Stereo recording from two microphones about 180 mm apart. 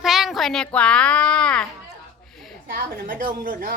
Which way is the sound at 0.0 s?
Centre (ahead or behind).